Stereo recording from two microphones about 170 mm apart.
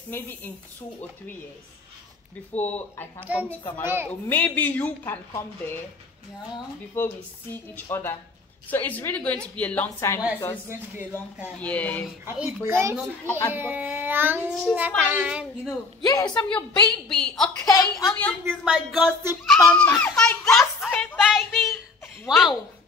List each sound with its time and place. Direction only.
0.1 s a woman's voice: 10° left (ahead or behind)
2.5 s a woman's voice: 10° left (ahead or behind)
3.2 s a child's voice: 10° right (ahead or behind)
4.1 s a woman's voice: 10° left (ahead or behind)
7.0 s a woman's voice: 10° left (ahead or behind)
10.7 s a child's voice: 10° right (ahead or behind)
11.6 s a woman's voice: 10° left (ahead or behind)
12.3 s a child's voice: 10° right (ahead or behind)
16.1 s a woman's voice: 20° left (ahead or behind)
16.4 s a woman's voice: 5° left (ahead or behind)
17.6 s a woman's voice: 20° left (ahead or behind)
18.0 s a woman's voice: 5° left (ahead or behind)